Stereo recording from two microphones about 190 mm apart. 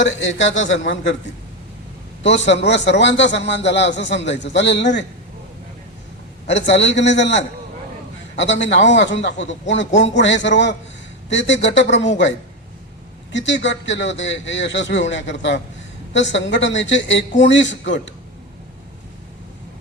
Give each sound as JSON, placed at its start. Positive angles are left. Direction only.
{"t": 0.3, "sound": "a man's voice", "side_deg": 75}
{"t": 2.2, "sound": "a man's voice", "side_deg": 70}
{"t": 6.5, "sound": "a man's voice", "side_deg": 70}
{"t": 8.6, "sound": "a man's voice", "side_deg": 70}
{"t": 13.3, "sound": "a man's voice", "side_deg": 70}